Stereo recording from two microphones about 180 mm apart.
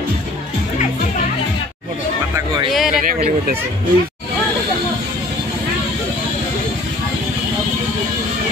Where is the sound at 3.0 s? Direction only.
50° right (ahead or behind).